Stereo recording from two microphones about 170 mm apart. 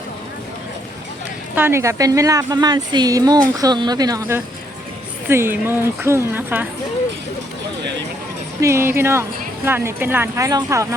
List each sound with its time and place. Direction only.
1.5 s a woman's voice: 15° right (ahead or behind)
8.6 s a woman's voice: 15° right (ahead or behind)